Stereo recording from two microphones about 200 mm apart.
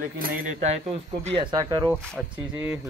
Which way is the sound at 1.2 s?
25° right (ahead or behind).